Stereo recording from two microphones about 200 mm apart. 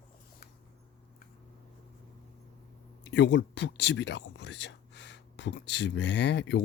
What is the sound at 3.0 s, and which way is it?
Speech, 60° left (ahead or behind).